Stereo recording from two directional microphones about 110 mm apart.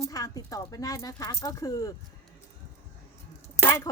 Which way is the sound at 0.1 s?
35° left (ahead or behind).